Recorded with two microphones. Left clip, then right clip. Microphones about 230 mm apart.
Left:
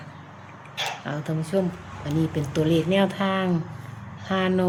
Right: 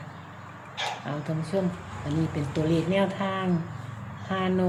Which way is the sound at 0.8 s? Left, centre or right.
Left.